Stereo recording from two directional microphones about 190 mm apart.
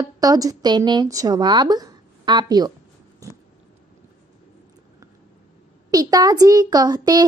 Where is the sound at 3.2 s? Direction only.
15° right (ahead or behind).